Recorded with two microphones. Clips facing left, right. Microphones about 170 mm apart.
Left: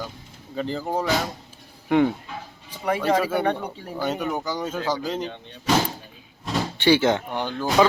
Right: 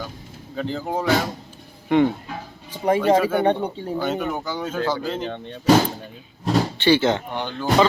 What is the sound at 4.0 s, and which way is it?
Speech, 10° left (ahead or behind).